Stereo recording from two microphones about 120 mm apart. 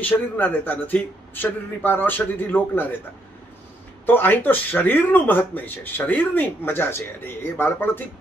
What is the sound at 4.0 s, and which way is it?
Speech, 15° left (ahead or behind).